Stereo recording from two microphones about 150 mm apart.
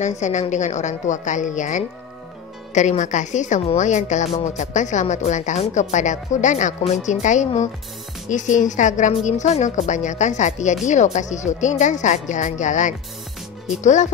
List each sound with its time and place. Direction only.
0.0 s a woman's voice: 50° left (ahead or behind)